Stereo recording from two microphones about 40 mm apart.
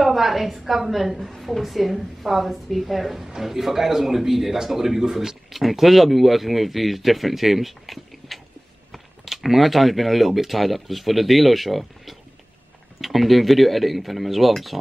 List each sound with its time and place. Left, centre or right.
0.0 s a woman's voice: centre